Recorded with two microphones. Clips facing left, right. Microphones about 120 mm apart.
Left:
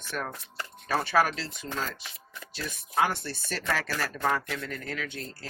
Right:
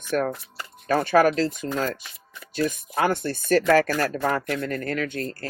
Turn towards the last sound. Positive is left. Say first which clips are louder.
# right 9 dB
turn(degrees=-55)  # may be behind; listen again after turning